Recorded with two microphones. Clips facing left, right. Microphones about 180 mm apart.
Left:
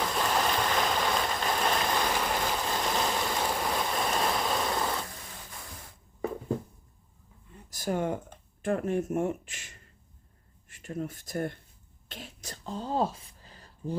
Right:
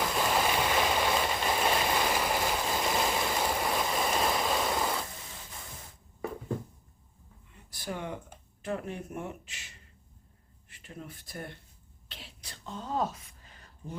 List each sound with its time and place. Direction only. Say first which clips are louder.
0.0 s boat: even; 5° right (ahead or behind)
7.7 s speech: left 7 dB; 45° left (ahead or behind)
12.0 s a sound: left 7 dB; 45° left (ahead or behind)